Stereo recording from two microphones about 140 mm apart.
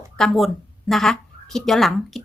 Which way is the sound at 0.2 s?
Centre (ahead or behind).